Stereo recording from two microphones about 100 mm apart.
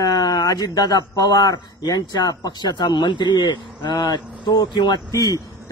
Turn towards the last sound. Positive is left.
turn(degrees=35)  # may be behind; listen again after turning